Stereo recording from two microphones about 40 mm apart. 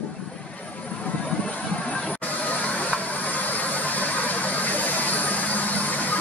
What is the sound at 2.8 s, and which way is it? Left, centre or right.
Vehicle, left.